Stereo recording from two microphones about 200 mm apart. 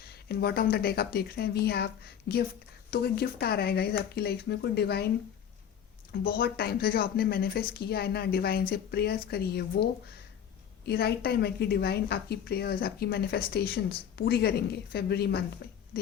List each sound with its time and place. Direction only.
0.0 s a woman's voice: 50° left (ahead or behind)
6.1 s a woman's voice: 50° left (ahead or behind)